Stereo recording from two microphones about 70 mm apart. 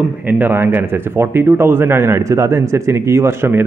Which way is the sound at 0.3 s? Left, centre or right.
Right.